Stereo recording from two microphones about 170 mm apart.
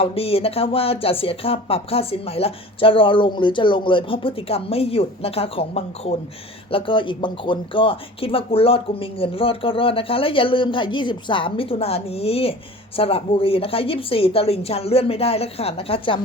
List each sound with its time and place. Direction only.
0.0 s speech: 35° left (ahead or behind)